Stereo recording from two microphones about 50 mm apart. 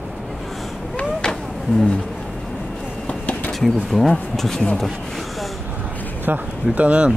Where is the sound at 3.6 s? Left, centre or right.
Centre.